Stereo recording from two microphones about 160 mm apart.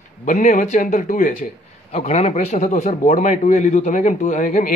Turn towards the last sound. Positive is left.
turn(degrees=50)  # may be behind; listen again after turning